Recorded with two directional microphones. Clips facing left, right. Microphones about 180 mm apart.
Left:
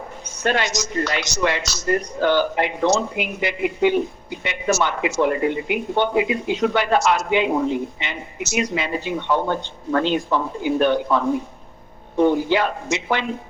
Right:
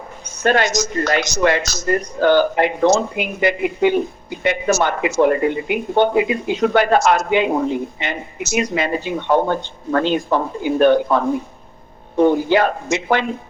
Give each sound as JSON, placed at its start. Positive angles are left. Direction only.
{"t": 0.4, "sound": "speech", "side_deg": -50}